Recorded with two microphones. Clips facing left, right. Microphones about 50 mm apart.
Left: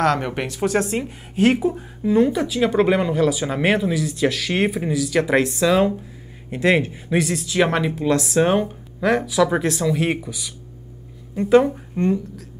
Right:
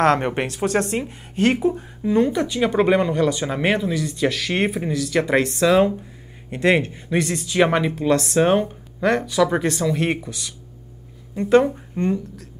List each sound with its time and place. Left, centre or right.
0.0 s a woman's voice: right
0.3 s a woman's voice: centre
0.6 s a woman's voice: centre